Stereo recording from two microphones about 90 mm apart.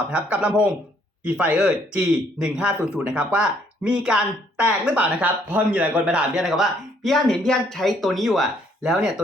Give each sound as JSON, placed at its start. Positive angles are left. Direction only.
{"t": 0.1, "sound": "speech", "side_deg": -20}